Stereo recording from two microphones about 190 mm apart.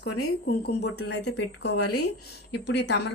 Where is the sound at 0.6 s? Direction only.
60° left (ahead or behind).